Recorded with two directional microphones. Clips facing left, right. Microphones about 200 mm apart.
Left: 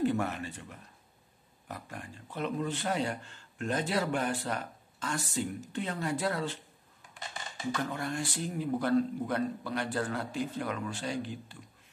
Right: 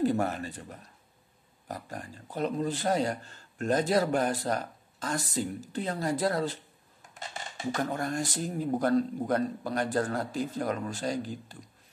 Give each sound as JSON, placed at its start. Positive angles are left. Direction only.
{"t": 0.0, "sound": "a man's voice", "side_deg": -40}